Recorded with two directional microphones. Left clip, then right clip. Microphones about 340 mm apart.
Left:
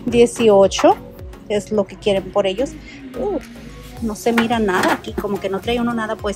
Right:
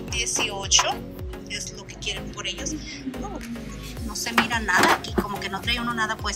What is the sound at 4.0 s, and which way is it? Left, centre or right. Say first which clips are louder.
Speech: left 5 dB; centre.